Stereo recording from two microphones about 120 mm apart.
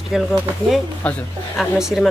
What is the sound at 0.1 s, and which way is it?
Speech, centre (ahead or behind).